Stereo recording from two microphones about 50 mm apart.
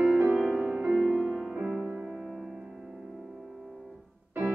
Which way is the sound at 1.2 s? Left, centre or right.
Centre.